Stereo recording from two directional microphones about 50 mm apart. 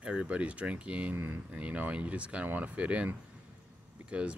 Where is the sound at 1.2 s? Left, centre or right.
Right.